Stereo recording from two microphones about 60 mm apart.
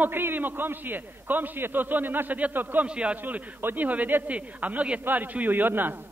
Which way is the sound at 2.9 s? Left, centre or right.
Right.